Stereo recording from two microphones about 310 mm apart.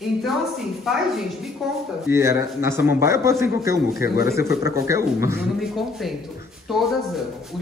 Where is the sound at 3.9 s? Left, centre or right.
Left.